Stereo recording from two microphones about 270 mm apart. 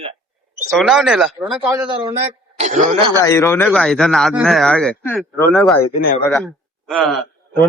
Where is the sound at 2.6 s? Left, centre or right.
Right.